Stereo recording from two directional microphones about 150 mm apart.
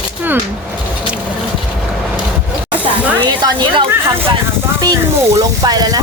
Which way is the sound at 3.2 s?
30° right (ahead or behind).